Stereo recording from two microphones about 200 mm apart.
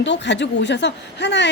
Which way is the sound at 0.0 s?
65° left (ahead or behind).